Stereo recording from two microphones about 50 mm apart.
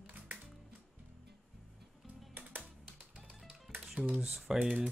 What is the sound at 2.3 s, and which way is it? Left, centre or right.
Music, right.